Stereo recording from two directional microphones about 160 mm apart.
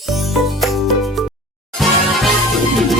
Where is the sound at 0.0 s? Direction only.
Centre (ahead or behind).